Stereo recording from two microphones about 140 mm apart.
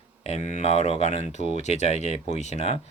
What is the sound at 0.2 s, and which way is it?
Speech, 50° left (ahead or behind).